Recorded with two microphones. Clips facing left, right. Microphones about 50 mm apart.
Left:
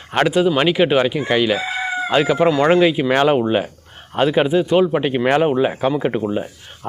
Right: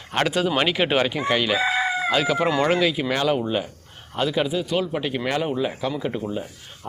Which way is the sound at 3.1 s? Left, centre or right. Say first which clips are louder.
Left 7 dB; left.